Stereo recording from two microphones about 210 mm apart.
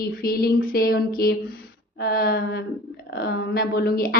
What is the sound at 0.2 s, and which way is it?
A woman's voice, 45° left (ahead or behind).